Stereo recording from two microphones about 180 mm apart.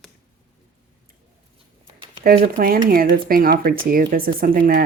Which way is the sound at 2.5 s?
55° right (ahead or behind).